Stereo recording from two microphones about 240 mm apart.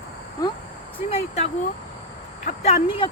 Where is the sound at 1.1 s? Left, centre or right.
Left.